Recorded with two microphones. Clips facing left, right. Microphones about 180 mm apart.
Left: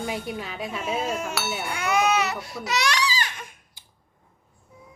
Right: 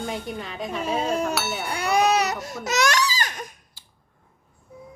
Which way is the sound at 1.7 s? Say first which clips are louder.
Right 2 dB; 35° right (ahead or behind).